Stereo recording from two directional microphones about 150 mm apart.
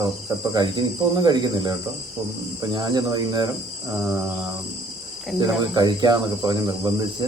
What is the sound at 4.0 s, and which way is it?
Mantra, 5° right (ahead or behind).